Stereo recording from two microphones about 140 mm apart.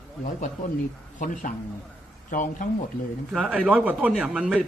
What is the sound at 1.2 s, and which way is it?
A man's voice, 70° left (ahead or behind).